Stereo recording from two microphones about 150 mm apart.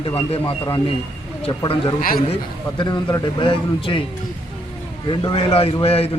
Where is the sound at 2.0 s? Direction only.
70° left (ahead or behind).